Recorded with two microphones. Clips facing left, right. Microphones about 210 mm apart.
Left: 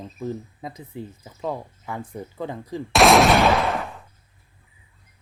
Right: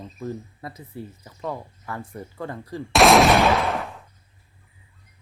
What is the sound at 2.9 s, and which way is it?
Gunshot, centre (ahead or behind).